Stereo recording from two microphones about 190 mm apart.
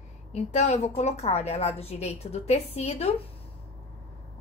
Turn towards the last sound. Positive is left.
turn(degrees=35)  # may be behind; listen again after turning